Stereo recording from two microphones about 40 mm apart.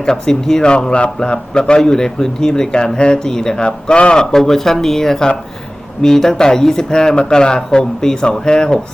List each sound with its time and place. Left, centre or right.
0.0 s a man's voice: centre